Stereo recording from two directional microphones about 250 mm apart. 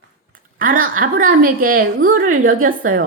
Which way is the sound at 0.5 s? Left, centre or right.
Right.